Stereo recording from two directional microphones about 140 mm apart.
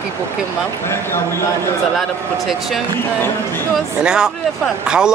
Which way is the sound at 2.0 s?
Centre (ahead or behind).